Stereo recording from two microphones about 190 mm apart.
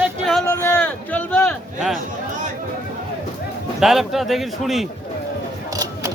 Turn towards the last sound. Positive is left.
turn(degrees=0)  # may be behind; listen again after turning